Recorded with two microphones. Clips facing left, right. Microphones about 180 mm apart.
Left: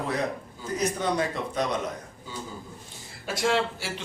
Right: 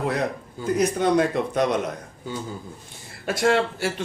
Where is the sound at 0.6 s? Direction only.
60° right (ahead or behind).